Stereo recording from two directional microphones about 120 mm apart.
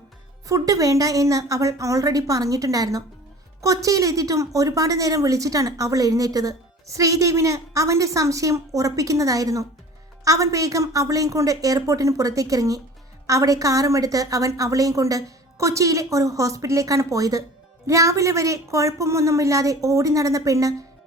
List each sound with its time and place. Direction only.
0.4 s a woman's voice: 30° right (ahead or behind)